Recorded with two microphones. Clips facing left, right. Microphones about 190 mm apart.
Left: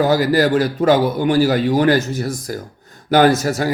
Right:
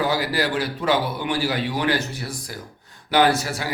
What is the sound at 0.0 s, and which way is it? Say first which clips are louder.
Speech: left 8 dB; 45° left (ahead or behind).